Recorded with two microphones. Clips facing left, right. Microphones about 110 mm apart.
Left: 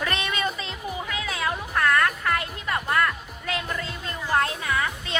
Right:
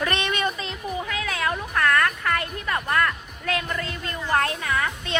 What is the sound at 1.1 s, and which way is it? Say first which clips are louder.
Music: right 1 dB; 20° left (ahead or behind).